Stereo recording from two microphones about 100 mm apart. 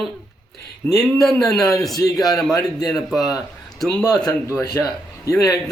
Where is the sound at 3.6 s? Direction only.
5° left (ahead or behind).